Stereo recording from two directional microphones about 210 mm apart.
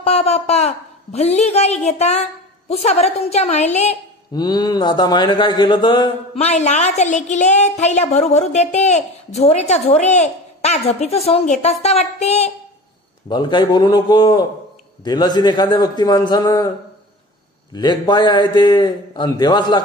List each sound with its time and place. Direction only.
0.0 s a woman's voice: 30° left (ahead or behind)
4.3 s speech: 20° left (ahead or behind)
13.3 s a man's voice: 20° left (ahead or behind)
17.7 s a man's voice: 20° left (ahead or behind)